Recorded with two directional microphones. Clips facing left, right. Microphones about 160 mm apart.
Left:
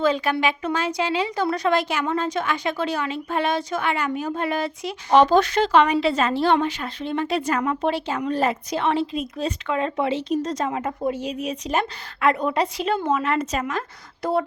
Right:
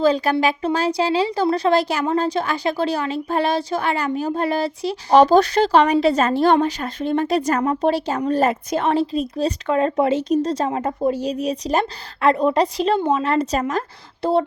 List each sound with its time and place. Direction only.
0.0 s speech: 35° right (ahead or behind)